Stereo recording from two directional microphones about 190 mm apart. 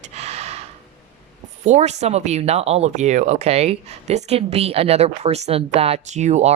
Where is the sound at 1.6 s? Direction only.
35° right (ahead or behind).